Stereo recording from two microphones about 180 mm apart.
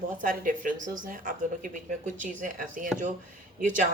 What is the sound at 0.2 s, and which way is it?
Speech, 50° right (ahead or behind).